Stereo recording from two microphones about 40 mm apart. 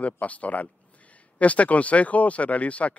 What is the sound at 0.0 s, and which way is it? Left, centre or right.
A man's voice, left.